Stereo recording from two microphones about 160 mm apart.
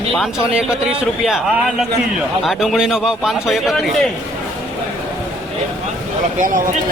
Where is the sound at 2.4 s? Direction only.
Centre (ahead or behind).